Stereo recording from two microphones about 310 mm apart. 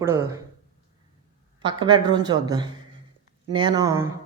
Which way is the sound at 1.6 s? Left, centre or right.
Centre.